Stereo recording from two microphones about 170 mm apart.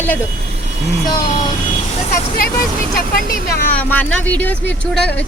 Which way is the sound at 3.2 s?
55° left (ahead or behind).